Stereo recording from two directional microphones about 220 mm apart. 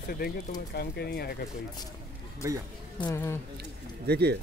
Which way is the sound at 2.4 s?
10° right (ahead or behind).